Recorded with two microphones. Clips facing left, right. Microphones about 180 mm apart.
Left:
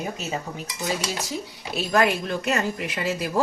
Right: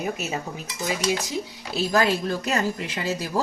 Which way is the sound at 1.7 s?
30° right (ahead or behind).